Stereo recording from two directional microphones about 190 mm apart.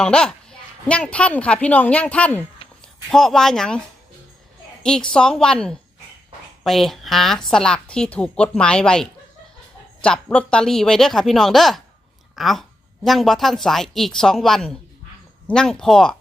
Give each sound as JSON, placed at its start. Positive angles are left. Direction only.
{"t": 0.0, "sound": "a woman's voice", "side_deg": 5}
{"t": 4.8, "sound": "a woman's voice", "side_deg": 5}